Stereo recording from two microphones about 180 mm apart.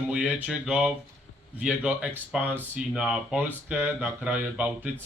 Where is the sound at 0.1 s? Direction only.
5° right (ahead or behind).